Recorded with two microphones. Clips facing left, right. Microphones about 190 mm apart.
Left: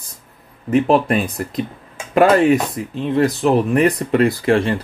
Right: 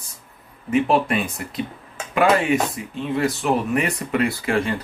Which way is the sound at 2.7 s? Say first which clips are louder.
Left 6 dB; 35° left (ahead or behind).